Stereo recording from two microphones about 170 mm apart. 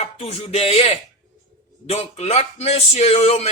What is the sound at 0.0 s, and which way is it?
Music, 40° left (ahead or behind).